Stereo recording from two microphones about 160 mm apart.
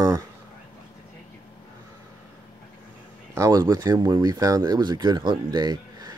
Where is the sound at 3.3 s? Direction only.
20° right (ahead or behind).